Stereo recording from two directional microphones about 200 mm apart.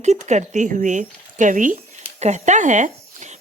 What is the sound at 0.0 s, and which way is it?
A woman's voice, 35° right (ahead or behind).